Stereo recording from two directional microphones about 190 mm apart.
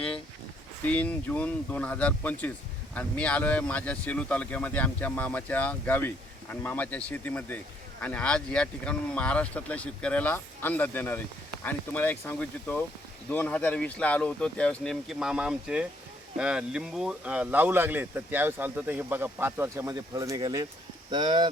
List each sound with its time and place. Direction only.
0.9 s speech: 5° left (ahead or behind); by 21.5 s 25° right (ahead or behind)